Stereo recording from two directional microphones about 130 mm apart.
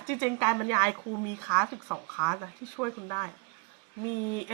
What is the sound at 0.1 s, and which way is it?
A woman's voice, 15° left (ahead or behind).